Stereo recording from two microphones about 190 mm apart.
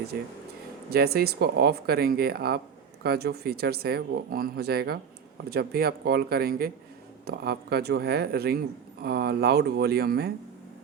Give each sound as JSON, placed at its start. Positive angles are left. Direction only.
{"t": 0.1, "sound": "speech", "side_deg": -55}